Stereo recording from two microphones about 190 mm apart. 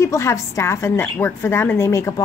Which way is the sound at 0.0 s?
15° left (ahead or behind).